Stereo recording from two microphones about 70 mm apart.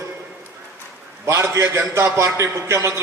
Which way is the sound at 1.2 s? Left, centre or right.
Right.